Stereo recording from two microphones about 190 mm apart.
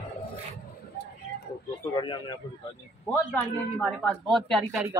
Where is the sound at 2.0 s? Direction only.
25° left (ahead or behind).